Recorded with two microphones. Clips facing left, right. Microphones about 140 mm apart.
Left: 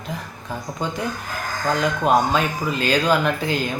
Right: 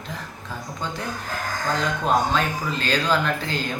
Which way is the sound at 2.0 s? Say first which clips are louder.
Left 3 dB; 10° left (ahead or behind).